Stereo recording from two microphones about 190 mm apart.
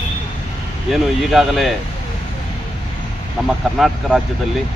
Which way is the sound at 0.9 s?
Centre (ahead or behind).